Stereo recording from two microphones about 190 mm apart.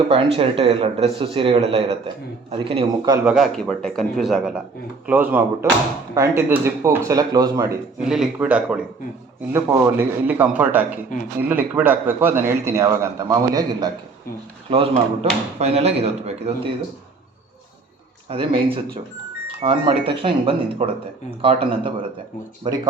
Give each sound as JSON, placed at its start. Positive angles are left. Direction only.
{"t": 0.1, "sound": "a man's voice", "side_deg": -30}
{"t": 3.2, "sound": "a man's voice", "side_deg": 0}
{"t": 8.0, "sound": "a man's voice", "side_deg": -5}
{"t": 18.3, "sound": "a man's voice", "side_deg": -25}